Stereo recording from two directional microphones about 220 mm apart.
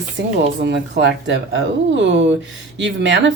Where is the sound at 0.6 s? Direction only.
50° right (ahead or behind).